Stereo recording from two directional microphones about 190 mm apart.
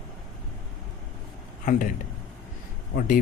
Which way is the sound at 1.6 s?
45° left (ahead or behind).